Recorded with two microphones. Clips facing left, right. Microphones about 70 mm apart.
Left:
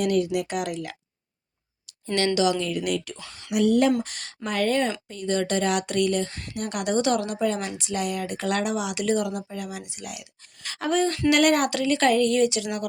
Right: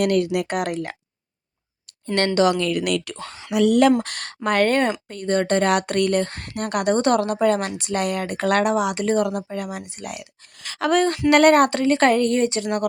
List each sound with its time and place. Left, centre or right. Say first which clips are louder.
0.0 s speech: right 3 dB; right
2.1 s speech: right 4 dB; right
2.6 s speech: right 4 dB; right
3.2 s speech: right 3 dB; right
4.0 s speech: right 8 dB; right
10.6 s speech: right 5 dB; right
11.3 s a woman's voice: right 7 dB; right